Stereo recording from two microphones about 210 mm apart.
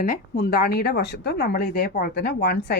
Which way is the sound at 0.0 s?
45° left (ahead or behind).